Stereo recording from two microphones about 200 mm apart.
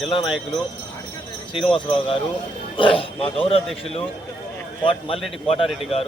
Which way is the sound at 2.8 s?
25° left (ahead or behind).